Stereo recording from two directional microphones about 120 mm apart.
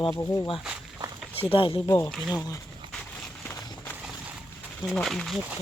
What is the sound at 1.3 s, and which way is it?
Speech, 50° left (ahead or behind).